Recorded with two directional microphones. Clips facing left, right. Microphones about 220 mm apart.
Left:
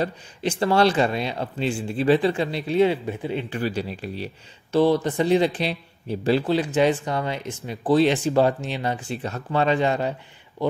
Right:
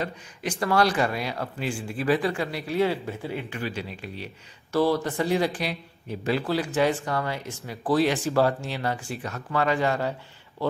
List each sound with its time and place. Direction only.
0.0 s a man's voice: 25° left (ahead or behind)
4.7 s a man's voice: 20° left (ahead or behind)